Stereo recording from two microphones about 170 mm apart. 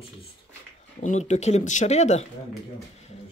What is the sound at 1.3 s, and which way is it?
Speech, 40° left (ahead or behind).